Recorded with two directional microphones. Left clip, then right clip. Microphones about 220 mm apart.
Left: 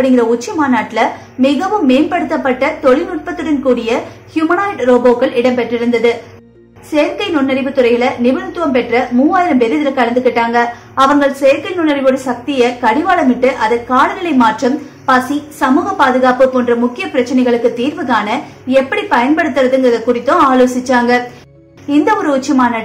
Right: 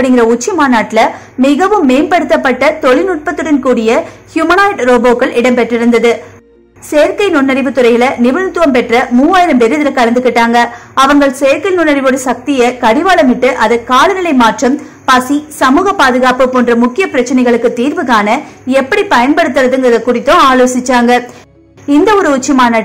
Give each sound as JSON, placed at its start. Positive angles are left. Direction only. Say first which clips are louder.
{"t": 0.0, "sound": "a woman's voice", "louder": "right 3 dB", "side_deg": -45}
{"t": 7.2, "sound": "a woman's voice", "louder": "right 5 dB", "side_deg": -45}